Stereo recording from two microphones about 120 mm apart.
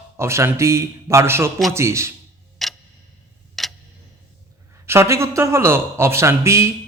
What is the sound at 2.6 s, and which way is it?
Tick-tock, centre (ahead or behind).